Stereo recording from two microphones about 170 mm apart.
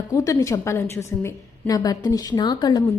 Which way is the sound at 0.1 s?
20° left (ahead or behind).